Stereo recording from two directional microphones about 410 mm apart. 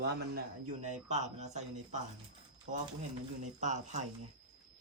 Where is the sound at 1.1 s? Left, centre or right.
Centre.